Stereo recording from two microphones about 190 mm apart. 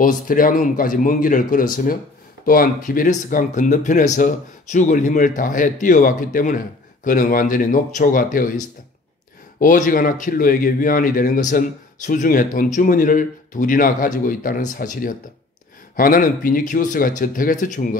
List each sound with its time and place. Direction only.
0.0 s speech: 45° left (ahead or behind)
9.6 s speech: 45° left (ahead or behind)